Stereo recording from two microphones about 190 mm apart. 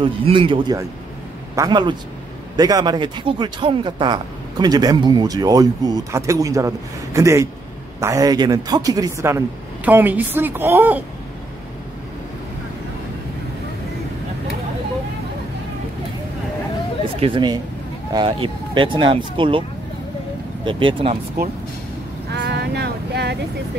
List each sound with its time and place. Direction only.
0.0 s a woman's voice: 25° right (ahead or behind); by 11.1 s 10° right (ahead or behind)
17.2 s speech: 25° right (ahead or behind)
20.6 s speech: 30° right (ahead or behind)
22.3 s a sound: 60° right (ahead or behind)